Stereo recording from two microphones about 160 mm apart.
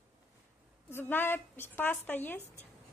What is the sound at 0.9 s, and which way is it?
A woman's voice, 10° left (ahead or behind).